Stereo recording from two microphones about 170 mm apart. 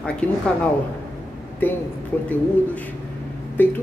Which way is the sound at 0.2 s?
5° left (ahead or behind).